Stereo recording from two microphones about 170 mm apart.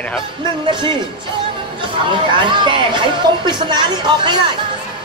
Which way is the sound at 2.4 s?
30° right (ahead or behind).